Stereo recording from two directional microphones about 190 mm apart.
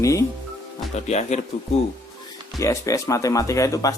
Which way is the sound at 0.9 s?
35° left (ahead or behind).